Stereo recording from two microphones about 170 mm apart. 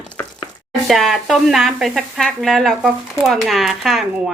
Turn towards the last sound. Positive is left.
turn(degrees=0)  # may be behind; listen again after turning